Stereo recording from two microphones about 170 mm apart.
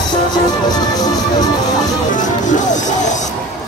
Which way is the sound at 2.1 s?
45° left (ahead or behind).